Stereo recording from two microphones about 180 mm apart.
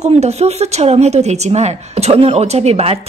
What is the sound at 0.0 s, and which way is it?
Speech, 35° right (ahead or behind).